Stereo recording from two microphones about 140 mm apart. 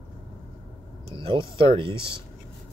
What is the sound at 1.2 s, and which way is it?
Speech, 40° right (ahead or behind).